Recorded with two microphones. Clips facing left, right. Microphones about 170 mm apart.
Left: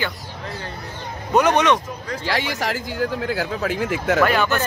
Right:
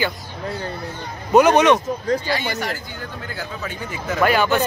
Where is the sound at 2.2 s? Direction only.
90° left.